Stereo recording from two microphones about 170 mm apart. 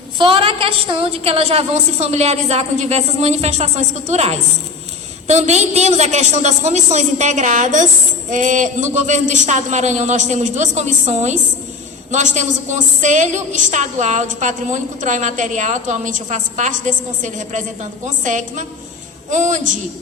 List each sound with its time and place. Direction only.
0.2 s a woman's voice: 30° right (ahead or behind); by 19.8 s 45° right (ahead or behind)